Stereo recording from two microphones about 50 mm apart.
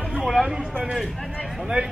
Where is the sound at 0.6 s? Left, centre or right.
Right.